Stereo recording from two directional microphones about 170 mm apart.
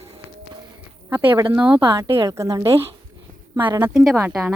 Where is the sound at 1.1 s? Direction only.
10° right (ahead or behind).